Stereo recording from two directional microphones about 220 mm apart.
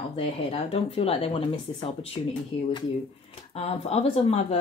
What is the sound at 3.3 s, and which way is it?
A woman's voice, 25° left (ahead or behind).